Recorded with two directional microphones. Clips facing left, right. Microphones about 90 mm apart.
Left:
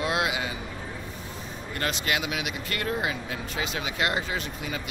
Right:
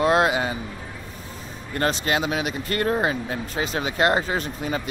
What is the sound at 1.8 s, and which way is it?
Speech, 35° right (ahead or behind).